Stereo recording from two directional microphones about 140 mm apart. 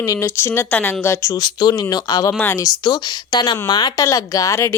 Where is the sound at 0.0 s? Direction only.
20° left (ahead or behind).